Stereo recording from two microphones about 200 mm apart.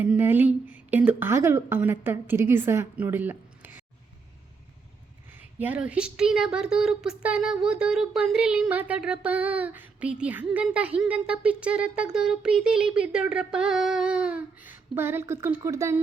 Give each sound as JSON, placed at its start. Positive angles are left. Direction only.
{"t": 0.0, "sound": "a woman's voice", "side_deg": -10}
{"t": 5.3, "sound": "speech", "side_deg": -10}